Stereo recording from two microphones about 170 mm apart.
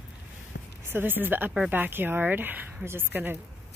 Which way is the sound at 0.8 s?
10° right (ahead or behind).